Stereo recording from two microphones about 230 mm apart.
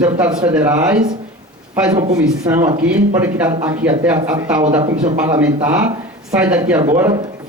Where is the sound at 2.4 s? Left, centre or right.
Centre.